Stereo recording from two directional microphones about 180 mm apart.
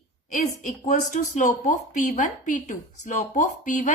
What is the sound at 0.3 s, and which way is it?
A woman's voice, 45° left (ahead or behind).